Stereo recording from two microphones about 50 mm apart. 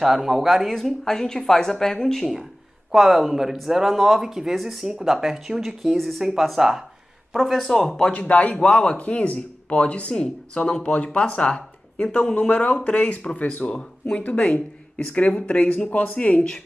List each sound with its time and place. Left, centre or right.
0.0 s speech: centre
0.7 s speech: centre
2.9 s speech: centre
8.1 s speech: left
13.7 s speech: centre
15.4 s speech: left